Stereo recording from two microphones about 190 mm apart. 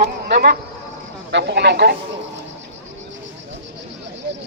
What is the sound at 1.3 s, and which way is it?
Speech, 65° right (ahead or behind).